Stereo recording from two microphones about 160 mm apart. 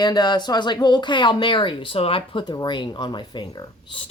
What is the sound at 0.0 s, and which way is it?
Speech, 25° left (ahead or behind).